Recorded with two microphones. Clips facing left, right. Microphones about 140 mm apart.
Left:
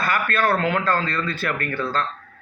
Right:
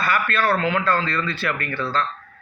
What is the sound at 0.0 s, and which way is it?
Speech, 45° left (ahead or behind).